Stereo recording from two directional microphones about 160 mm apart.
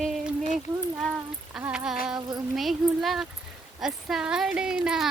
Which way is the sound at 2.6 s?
Centre (ahead or behind).